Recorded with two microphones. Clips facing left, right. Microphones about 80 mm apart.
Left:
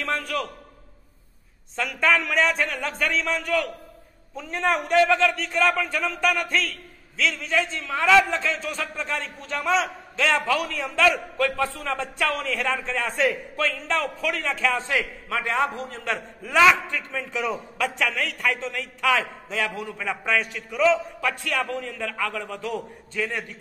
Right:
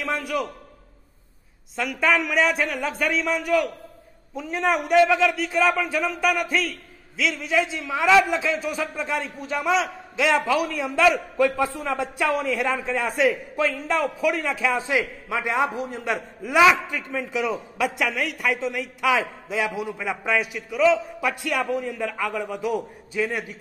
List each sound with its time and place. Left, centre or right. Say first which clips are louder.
0.0 s a man's voice: right 1 dB; centre
1.8 s a man's voice: right 1 dB; centre